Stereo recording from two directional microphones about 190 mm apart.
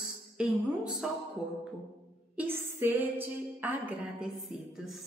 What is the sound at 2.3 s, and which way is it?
A woman's voice, 10° right (ahead or behind).